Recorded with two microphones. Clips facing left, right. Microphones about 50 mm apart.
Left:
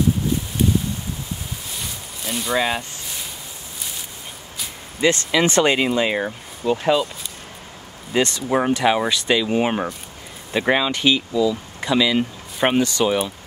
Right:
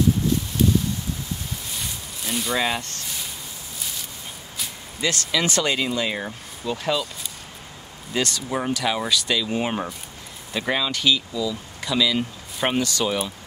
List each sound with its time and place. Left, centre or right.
1.8 s a sound: centre
5.0 s speech: left
8.1 s speech: left